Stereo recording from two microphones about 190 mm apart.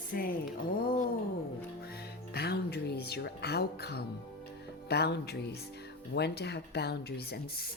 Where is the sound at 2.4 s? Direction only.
55° left (ahead or behind).